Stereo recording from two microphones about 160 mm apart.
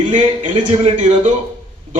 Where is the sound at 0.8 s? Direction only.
45° right (ahead or behind).